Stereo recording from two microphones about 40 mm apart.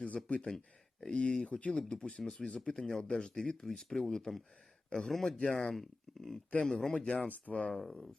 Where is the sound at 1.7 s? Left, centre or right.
Left.